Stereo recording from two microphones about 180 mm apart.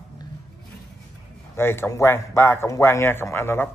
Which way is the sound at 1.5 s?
15° left (ahead or behind).